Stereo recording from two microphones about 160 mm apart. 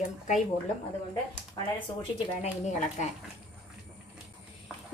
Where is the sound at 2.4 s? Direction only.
45° left (ahead or behind).